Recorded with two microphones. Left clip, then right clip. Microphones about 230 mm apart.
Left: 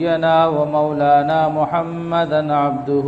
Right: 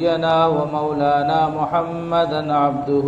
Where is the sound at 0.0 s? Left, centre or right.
Left.